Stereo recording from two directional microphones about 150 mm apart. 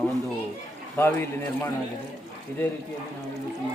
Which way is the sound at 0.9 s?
15° left (ahead or behind).